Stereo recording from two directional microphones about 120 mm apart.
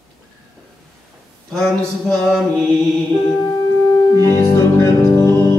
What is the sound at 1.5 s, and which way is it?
Mantra, 5° left (ahead or behind).